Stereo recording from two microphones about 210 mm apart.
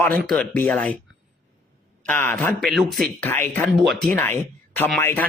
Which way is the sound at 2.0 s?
10° left (ahead or behind).